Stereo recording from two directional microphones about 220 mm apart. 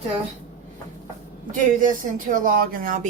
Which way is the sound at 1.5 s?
35° right (ahead or behind).